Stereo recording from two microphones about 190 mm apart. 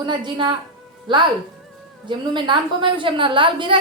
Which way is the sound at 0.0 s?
25° right (ahead or behind).